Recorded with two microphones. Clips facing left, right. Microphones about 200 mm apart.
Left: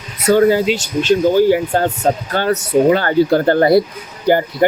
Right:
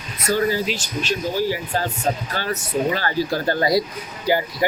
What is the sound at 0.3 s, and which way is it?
Speech, 65° left (ahead or behind).